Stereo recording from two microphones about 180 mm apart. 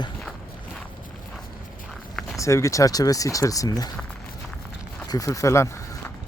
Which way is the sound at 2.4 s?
15° left (ahead or behind).